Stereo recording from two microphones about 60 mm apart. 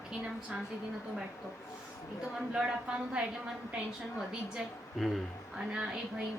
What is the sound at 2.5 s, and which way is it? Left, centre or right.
Speech, centre.